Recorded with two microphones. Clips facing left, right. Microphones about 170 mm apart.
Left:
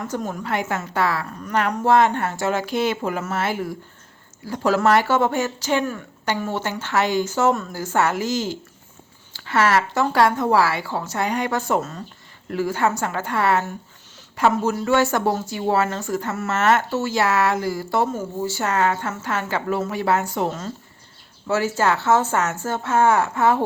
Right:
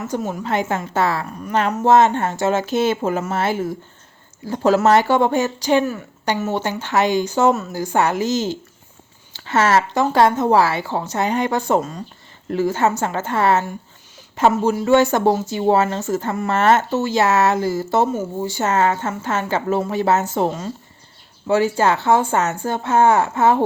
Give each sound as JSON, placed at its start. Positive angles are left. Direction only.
{"t": 0.0, "sound": "speech", "side_deg": -10}
{"t": 0.4, "sound": "speech", "side_deg": -25}
{"t": 1.3, "sound": "speech", "side_deg": -10}
{"t": 1.8, "sound": "speech", "side_deg": -25}
{"t": 5.8, "sound": "a woman's voice", "side_deg": -10}
{"t": 14.5, "sound": "speech", "side_deg": -10}
{"t": 16.5, "sound": "speech", "side_deg": -30}
{"t": 20.5, "sound": "speech", "side_deg": -10}